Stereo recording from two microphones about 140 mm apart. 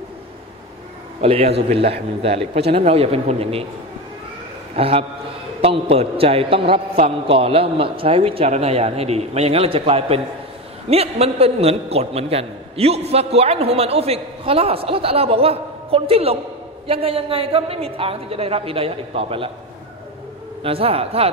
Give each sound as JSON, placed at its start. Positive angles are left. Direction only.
{"t": 1.2, "sound": "a man's voice", "side_deg": -45}
{"t": 4.7, "sound": "a man's voice", "side_deg": -45}
{"t": 20.6, "sound": "a man's voice", "side_deg": -45}